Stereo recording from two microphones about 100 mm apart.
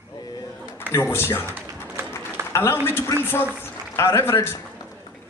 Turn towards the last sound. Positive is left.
turn(degrees=25)  # may be behind; listen again after turning